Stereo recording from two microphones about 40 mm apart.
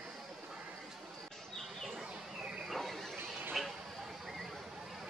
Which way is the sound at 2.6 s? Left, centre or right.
Centre.